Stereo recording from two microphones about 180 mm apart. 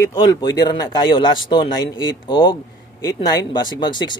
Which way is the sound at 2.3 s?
25° left (ahead or behind).